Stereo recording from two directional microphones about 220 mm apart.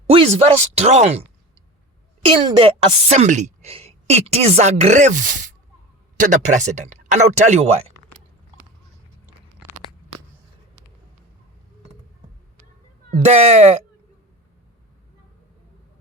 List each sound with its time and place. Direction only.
0.1 s a woman's voice: 25° right (ahead or behind)
13.2 s a woman's voice: 30° right (ahead or behind)